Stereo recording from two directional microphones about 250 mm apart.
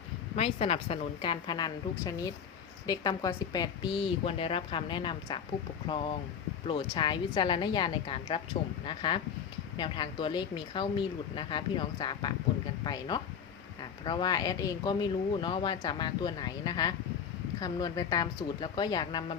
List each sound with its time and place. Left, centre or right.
0.3 s speech: left
6.7 s speech: centre